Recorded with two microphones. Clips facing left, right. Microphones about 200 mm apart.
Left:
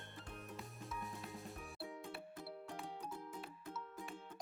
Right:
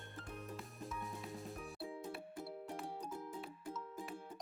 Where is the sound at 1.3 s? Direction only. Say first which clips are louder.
Right 3 dB; centre (ahead or behind).